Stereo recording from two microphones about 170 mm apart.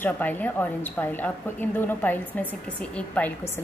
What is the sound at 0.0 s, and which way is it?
A woman's voice, 10° left (ahead or behind).